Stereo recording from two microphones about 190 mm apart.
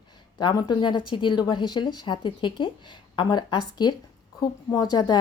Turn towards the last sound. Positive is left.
turn(degrees=20)  # may be behind; listen again after turning